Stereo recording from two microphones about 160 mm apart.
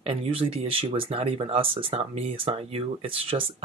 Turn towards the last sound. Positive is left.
turn(degrees=-35)  # may be behind; listen again after turning